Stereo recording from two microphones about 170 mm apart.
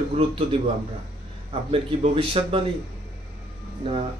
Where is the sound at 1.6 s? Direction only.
35° right (ahead or behind).